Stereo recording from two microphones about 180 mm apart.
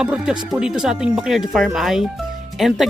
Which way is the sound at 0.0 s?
5° right (ahead or behind).